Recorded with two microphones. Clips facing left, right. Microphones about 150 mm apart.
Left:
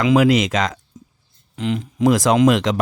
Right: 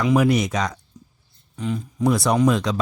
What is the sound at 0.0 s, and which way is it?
Speech, 90° left.